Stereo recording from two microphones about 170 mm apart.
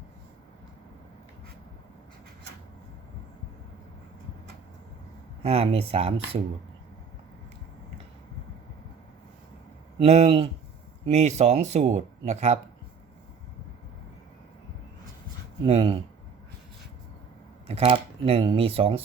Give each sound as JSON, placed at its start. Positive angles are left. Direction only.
{"t": 5.4, "sound": "speech", "side_deg": -35}
{"t": 10.0, "sound": "speech", "side_deg": -35}
{"t": 15.6, "sound": "speech", "side_deg": -35}
{"t": 17.7, "sound": "speech", "side_deg": -35}